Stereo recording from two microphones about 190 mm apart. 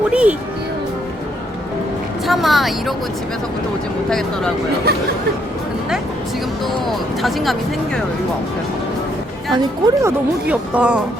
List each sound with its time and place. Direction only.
0.1 s speech: 5° right (ahead or behind)
2.2 s speech: centre (ahead or behind)
4.9 s speech: 55° right (ahead or behind)
6.8 s speech: centre (ahead or behind)
9.5 s speech: 20° right (ahead or behind)